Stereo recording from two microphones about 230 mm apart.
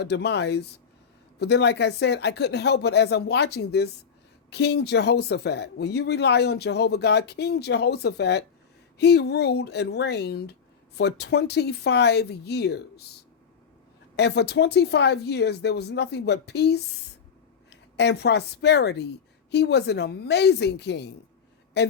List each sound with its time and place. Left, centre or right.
0.0 s speech: left
14.2 s speech: left